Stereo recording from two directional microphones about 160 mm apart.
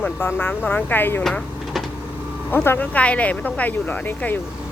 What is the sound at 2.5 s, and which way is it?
Speech, 15° left (ahead or behind).